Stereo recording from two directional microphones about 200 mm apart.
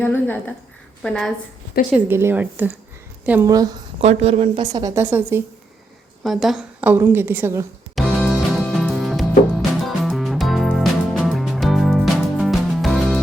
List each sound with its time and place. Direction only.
0.0 s a woman's voice: 10° left (ahead or behind)
1.9 s a woman's voice: 10° right (ahead or behind)
4.0 s a woman's voice: 30° right (ahead or behind)
4.7 s a woman's voice: 15° right (ahead or behind)
6.2 s a woman's voice: centre (ahead or behind)
7.9 s music: centre (ahead or behind)